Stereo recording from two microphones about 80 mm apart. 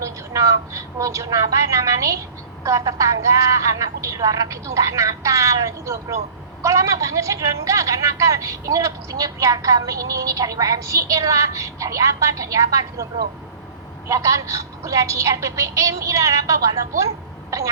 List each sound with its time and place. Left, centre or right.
0.0 s a sound: right
2.6 s a woman's voice: right
14.1 s a woman's voice: right